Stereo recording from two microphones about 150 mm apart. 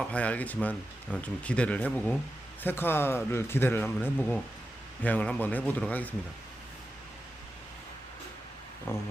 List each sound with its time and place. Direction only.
0.1 s speech: 10° left (ahead or behind)
8.9 s speech: 15° left (ahead or behind)